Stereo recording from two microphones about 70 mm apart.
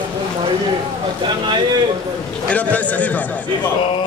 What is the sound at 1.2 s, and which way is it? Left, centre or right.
Speech, right.